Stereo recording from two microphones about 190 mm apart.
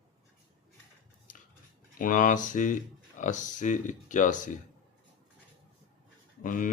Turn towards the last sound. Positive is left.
turn(degrees=45)  # may be behind; listen again after turning